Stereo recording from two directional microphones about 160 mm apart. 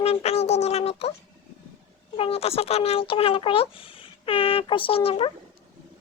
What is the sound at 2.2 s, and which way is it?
Speech, 40° left (ahead or behind).